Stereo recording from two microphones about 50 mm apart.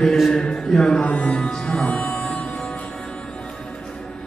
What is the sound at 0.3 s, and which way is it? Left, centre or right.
Speech, centre.